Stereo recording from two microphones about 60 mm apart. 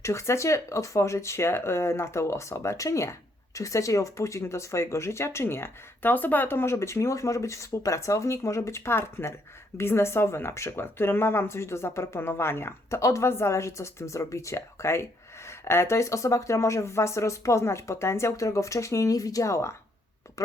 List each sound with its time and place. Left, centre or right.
0.0 s speech: left
13.0 s speech: left
13.2 s speech: left